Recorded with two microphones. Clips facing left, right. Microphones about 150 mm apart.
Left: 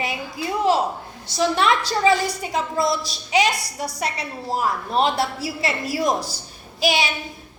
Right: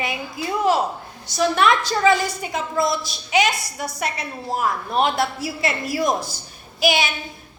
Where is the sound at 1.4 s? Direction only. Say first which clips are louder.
Right 1 dB; 30° left (ahead or behind).